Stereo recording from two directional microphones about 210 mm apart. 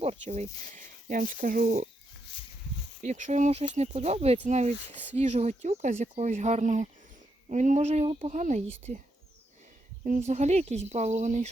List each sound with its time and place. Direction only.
0.0 s speech: 30° right (ahead or behind)
3.0 s speech: 35° right (ahead or behind)
10.0 s speech: 35° right (ahead or behind)